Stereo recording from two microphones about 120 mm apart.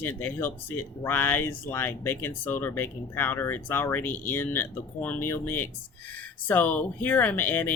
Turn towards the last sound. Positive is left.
turn(degrees=15)  # may be behind; listen again after turning